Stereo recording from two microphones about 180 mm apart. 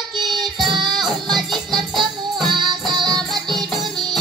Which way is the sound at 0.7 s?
25° right (ahead or behind).